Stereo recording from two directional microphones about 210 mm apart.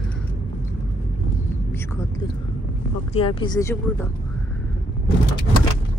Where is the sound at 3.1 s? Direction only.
25° left (ahead or behind).